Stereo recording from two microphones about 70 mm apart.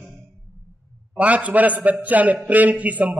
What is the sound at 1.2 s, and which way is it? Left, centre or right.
A man's voice, centre.